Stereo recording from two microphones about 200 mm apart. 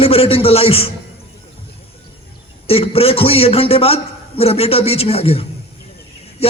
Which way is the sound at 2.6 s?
30° left (ahead or behind).